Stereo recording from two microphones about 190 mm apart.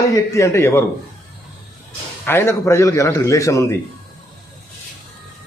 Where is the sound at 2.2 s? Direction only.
10° left (ahead or behind).